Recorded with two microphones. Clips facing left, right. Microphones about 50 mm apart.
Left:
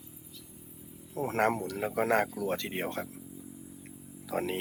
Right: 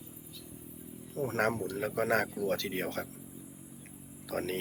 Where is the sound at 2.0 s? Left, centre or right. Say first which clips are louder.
Left 2 dB; centre.